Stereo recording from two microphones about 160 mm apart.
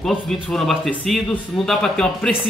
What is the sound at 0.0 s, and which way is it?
Speech, centre (ahead or behind).